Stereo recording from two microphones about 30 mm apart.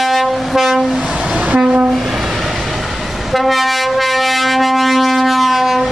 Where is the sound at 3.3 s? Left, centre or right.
Centre.